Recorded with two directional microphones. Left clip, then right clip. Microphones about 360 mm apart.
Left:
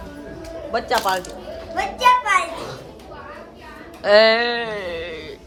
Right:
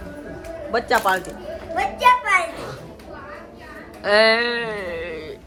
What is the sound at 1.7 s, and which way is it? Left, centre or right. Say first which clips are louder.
Speech: even; centre.